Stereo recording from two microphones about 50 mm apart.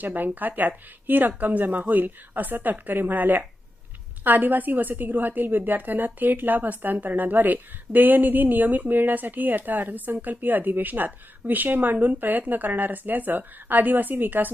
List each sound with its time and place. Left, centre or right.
0.0 s a woman's voice: right